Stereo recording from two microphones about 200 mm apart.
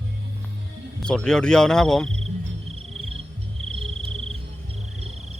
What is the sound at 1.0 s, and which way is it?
Speech, 5° left (ahead or behind).